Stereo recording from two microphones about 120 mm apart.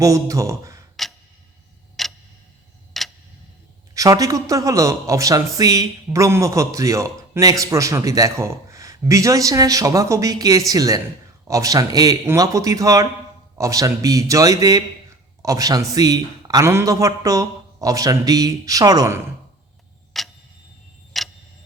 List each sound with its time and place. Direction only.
0.0 s speech: 25° right (ahead or behind)
2.0 s tick-tock: centre (ahead or behind)
3.9 s speech: 30° right (ahead or behind)
20.1 s clock: centre (ahead or behind)
21.1 s tick-tock: centre (ahead or behind)